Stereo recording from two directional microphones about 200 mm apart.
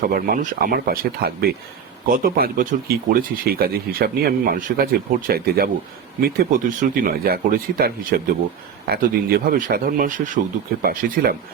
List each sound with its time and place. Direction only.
0.1 s speech: 50° right (ahead or behind)